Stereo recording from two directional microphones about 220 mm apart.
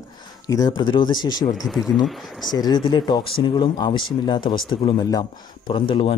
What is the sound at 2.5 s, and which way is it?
Speech, 20° left (ahead or behind).